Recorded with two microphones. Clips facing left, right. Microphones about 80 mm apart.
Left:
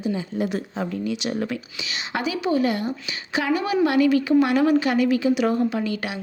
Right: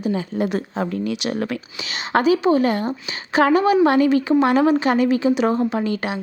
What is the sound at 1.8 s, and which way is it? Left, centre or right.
A woman's voice, right.